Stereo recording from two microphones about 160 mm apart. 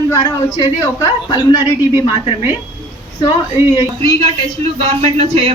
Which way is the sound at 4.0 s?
40° right (ahead or behind).